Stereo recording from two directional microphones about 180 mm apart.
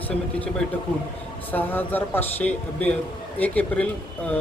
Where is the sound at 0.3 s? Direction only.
5° left (ahead or behind).